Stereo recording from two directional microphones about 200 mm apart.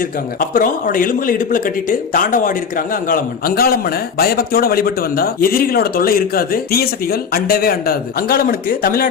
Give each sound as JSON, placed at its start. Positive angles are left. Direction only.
{"t": 0.3, "sound": "speech", "side_deg": 45}